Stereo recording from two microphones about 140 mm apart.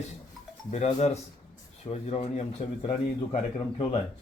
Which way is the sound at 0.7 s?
50° left (ahead or behind).